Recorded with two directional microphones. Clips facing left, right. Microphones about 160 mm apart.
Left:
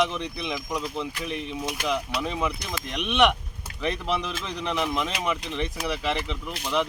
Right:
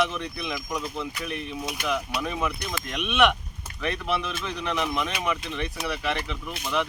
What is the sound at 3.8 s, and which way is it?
Speech, 20° left (ahead or behind).